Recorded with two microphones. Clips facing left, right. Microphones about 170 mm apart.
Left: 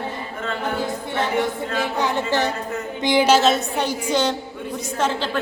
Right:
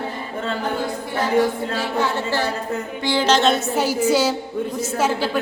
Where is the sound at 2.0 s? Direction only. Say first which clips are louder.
Left 1 dB; 20° left (ahead or behind).